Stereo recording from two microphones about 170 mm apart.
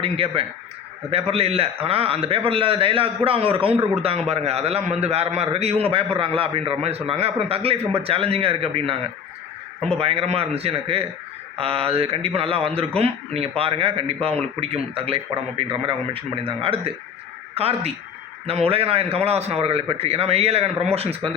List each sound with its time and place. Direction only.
0.0 s a man's voice: 35° right (ahead or behind)
10.0 s a man's voice: 35° right (ahead or behind)